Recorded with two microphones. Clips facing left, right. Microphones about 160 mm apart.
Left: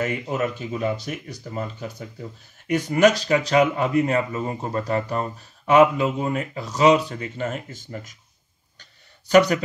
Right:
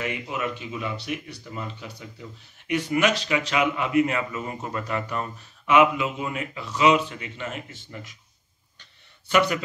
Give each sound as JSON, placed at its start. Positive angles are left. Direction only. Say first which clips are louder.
{"t": 0.0, "sound": "speech", "louder": "left 5 dB", "side_deg": 40}
{"t": 9.3, "sound": "speech", "louder": "left 6 dB", "side_deg": 40}